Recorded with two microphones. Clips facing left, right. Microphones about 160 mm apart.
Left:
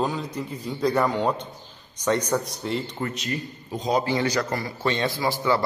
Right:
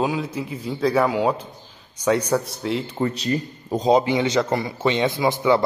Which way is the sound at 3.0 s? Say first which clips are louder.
Right 6 dB; 30° right (ahead or behind).